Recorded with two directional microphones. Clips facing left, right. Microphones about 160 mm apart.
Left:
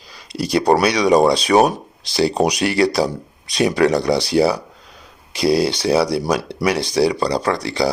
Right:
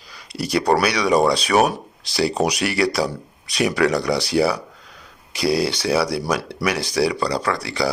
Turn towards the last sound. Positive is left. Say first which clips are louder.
# left 3 dB
turn(degrees=25)  # may be behind; listen again after turning